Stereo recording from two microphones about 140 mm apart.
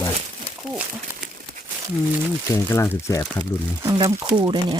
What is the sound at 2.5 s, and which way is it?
Speech, 20° left (ahead or behind).